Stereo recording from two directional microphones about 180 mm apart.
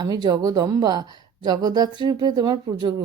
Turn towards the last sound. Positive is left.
turn(degrees=-20)  # may be behind; listen again after turning